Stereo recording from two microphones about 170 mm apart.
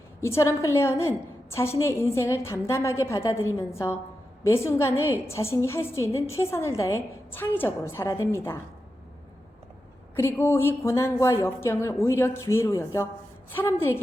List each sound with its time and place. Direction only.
0.2 s a woman's voice: 15° left (ahead or behind)
10.2 s a woman's voice: 15° left (ahead or behind)